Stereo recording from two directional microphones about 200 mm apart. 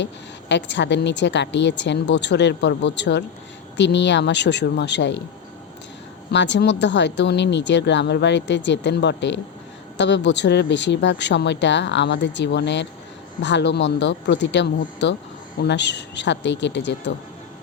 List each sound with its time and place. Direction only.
0.0 s a woman's voice: 60° left (ahead or behind)
6.3 s a woman's voice: 60° left (ahead or behind)